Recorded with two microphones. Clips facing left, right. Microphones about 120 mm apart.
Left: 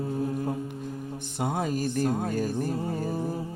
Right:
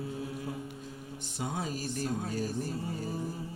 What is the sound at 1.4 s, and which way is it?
Speech, 50° left (ahead or behind).